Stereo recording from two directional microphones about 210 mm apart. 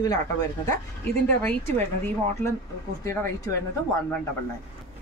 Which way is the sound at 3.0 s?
15° left (ahead or behind).